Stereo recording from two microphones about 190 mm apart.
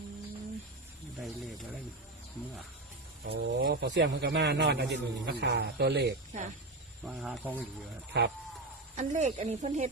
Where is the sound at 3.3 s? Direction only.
60° right (ahead or behind).